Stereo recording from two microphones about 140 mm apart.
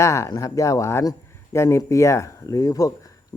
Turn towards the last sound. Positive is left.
turn(degrees=25)  # may be behind; listen again after turning